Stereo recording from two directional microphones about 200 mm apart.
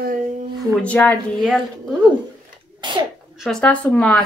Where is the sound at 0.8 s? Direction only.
5° left (ahead or behind).